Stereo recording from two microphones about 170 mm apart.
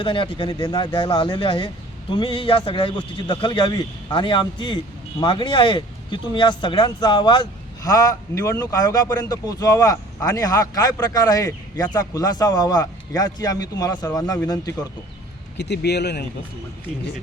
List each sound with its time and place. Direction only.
0.0 s speech: 30° left (ahead or behind)
15.5 s speech: 75° left (ahead or behind)